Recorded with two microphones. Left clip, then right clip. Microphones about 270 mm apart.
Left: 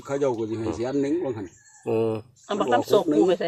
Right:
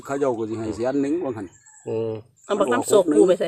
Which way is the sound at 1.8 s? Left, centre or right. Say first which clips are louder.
Left 2 dB; left.